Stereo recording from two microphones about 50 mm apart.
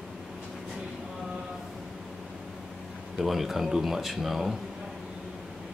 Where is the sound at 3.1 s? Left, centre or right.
Centre.